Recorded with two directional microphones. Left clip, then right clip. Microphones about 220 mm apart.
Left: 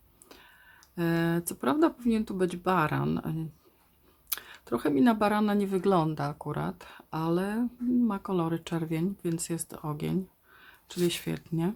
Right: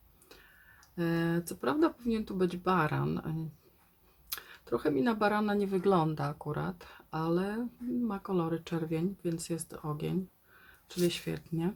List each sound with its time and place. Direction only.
0.3 s speech: 20° left (ahead or behind)